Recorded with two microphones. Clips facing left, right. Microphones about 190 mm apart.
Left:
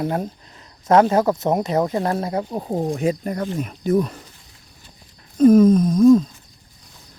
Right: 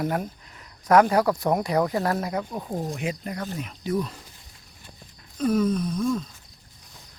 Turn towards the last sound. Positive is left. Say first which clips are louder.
# left 13 dB
turn(degrees=40)  # may be behind; listen again after turning